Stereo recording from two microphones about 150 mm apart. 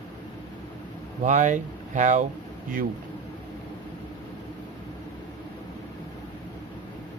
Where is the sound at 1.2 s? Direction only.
55° right (ahead or behind).